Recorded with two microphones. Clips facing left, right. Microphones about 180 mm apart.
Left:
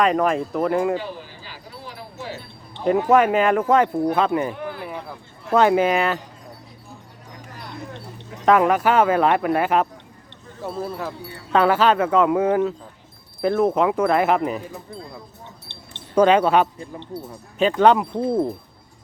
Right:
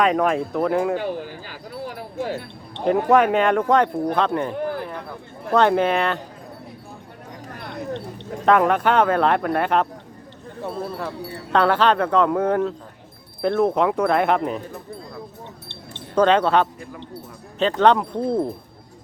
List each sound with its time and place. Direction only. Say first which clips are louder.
0.0 s speech: even; centre (ahead or behind)
1.5 s a sound: right 6 dB; 50° right (ahead or behind)
3.1 s speech: even; centre (ahead or behind)
8.4 s speech: left 1 dB; 5° left (ahead or behind)
15.9 s speech: left 1 dB; 10° left (ahead or behind)